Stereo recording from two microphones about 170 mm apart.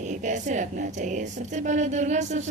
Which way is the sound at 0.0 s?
45° right (ahead or behind).